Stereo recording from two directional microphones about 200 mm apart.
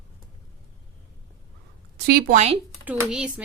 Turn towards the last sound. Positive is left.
turn(degrees=-5)  # may be behind; listen again after turning